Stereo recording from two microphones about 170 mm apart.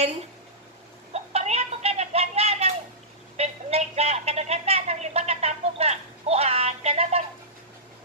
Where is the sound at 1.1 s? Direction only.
40° right (ahead or behind).